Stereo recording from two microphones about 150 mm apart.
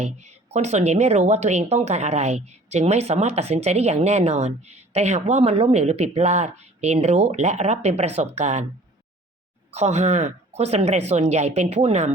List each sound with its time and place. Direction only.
0.0 s a woman's voice: 50° right (ahead or behind)
9.7 s a woman's voice: 50° right (ahead or behind)